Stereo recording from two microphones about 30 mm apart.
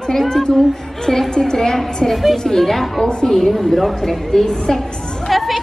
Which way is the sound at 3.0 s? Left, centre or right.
Left.